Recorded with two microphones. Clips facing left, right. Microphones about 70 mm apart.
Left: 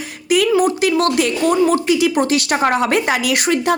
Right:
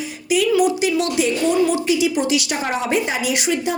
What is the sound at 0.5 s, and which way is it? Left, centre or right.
Speech, left.